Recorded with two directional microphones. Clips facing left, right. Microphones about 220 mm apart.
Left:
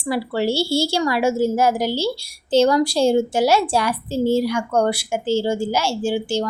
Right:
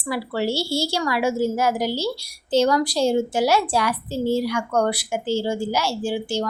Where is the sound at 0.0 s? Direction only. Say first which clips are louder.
Left 3 dB; 30° left (ahead or behind).